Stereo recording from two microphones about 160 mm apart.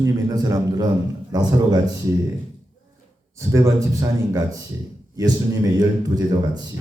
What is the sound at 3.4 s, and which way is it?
Speech, 20° right (ahead or behind).